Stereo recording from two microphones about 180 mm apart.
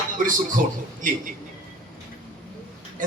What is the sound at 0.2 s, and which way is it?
Speech, 45° right (ahead or behind).